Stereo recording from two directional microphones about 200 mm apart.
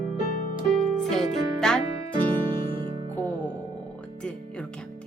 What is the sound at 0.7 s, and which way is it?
Music, centre (ahead or behind).